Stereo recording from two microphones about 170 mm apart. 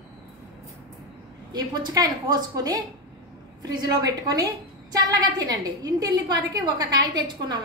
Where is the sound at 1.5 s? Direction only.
25° right (ahead or behind).